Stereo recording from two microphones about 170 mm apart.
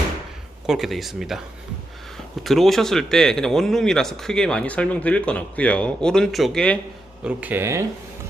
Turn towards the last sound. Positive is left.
turn(degrees=-15)  # may be behind; listen again after turning